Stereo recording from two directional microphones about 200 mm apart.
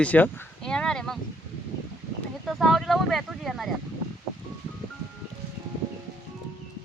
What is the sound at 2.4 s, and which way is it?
Speech, centre (ahead or behind).